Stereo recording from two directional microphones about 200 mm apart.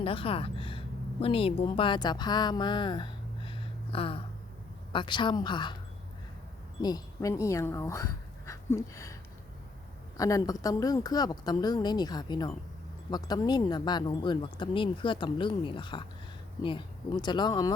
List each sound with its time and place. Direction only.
0.0 s a woman's voice: 25° left (ahead or behind)
6.8 s speech: 20° left (ahead or behind)
10.2 s speech: 15° left (ahead or behind)